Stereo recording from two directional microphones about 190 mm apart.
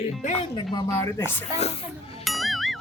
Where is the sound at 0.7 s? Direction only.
15° left (ahead or behind).